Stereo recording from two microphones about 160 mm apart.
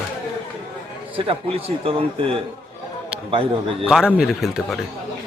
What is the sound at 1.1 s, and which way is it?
A man's voice, 35° right (ahead or behind).